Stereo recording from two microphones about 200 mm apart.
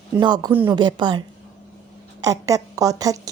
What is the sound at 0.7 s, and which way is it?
A woman's voice, 20° right (ahead or behind).